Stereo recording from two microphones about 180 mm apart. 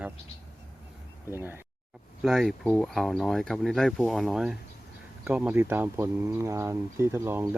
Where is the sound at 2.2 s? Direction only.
Centre (ahead or behind).